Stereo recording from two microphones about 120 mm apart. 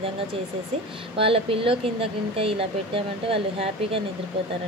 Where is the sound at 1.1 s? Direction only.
50° right (ahead or behind).